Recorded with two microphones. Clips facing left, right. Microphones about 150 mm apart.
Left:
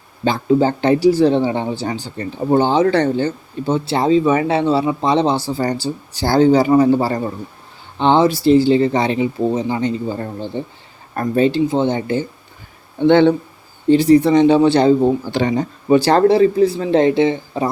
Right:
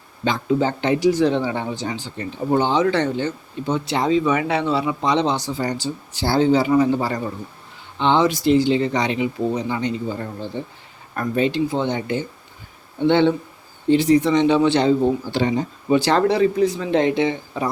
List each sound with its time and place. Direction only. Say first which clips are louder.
0.3 s speech: left 5 dB; 35° left (ahead or behind)
2.0 s speech: left 4 dB; 35° left (ahead or behind)
9.8 s speech: left 4 dB; 40° left (ahead or behind)
13.1 s a man's voice: left 5 dB; 50° left (ahead or behind)
13.9 s speech: left 5 dB; 35° left (ahead or behind)
15.3 s speech: left 3 dB; 60° left (ahead or behind)
16.0 s speech: left 5 dB; 40° left (ahead or behind)